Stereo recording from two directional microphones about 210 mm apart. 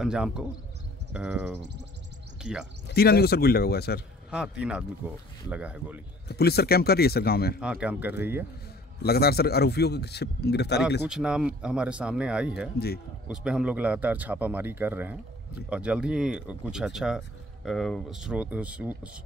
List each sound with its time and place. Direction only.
0.0 s speech: 5° right (ahead or behind)
2.9 s a man's voice: 50° left (ahead or behind)
4.3 s speech: 5° right (ahead or behind)
6.2 s a man's voice: 50° left (ahead or behind)
7.6 s a man's voice: 5° right (ahead or behind)
9.0 s a man's voice: 50° left (ahead or behind)
11.1 s speech: 5° right (ahead or behind)
12.7 s a man's voice: 50° left (ahead or behind)
13.3 s a man's voice: 5° right (ahead or behind)